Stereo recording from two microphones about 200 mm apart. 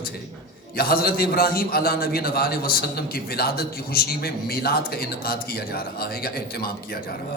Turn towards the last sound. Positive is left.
turn(degrees=50)  # may be behind; listen again after turning